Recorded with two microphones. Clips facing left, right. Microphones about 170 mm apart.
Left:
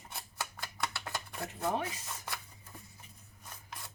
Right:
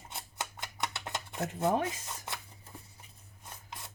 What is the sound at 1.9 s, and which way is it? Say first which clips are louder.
Shuffling cards: right 3 dB; 20° right (ahead or behind).